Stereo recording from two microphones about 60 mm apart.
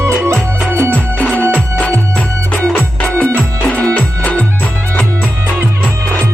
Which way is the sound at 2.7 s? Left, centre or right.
Left.